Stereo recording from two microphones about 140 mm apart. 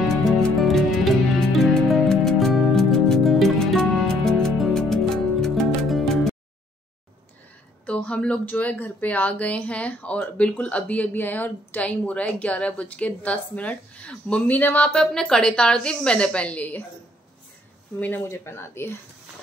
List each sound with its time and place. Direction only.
0.2 s music: centre (ahead or behind)
7.8 s speech: 10° left (ahead or behind)
17.9 s speech: 15° left (ahead or behind)